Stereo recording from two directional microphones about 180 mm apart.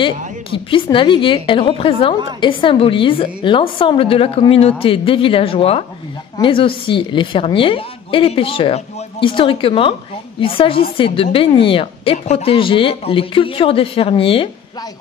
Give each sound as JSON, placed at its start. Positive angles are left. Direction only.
{"t": 0.0, "sound": "a woman's voice", "side_deg": 30}